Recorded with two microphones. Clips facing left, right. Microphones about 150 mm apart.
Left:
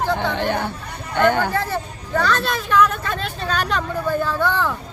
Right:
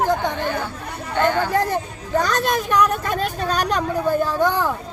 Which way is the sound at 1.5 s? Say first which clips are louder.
Right 3 dB; 15° right (ahead or behind).